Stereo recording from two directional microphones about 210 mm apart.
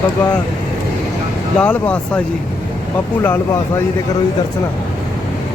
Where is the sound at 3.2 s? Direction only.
10° left (ahead or behind).